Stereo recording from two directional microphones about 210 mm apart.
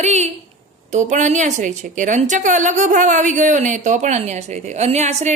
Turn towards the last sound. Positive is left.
turn(degrees=-30)  # may be behind; listen again after turning